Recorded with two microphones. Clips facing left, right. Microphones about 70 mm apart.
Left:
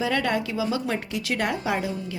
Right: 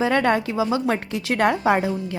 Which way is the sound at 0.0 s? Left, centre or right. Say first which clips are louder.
Right 5 dB; right.